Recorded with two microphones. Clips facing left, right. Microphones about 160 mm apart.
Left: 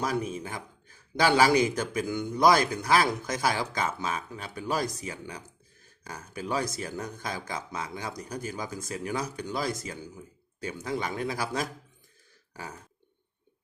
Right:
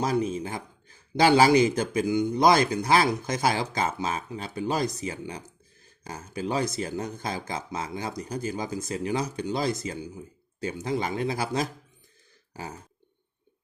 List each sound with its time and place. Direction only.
0.0 s speech: 25° right (ahead or behind)